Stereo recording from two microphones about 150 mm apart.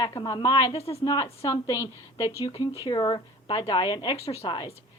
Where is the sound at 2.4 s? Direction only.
35° left (ahead or behind).